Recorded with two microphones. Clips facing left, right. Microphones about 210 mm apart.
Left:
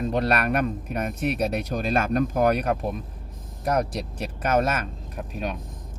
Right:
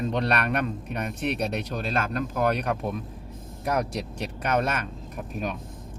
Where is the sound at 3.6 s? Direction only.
Centre (ahead or behind).